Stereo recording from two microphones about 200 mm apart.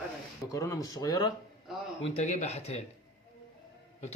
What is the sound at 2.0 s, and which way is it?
Speech, 35° left (ahead or behind).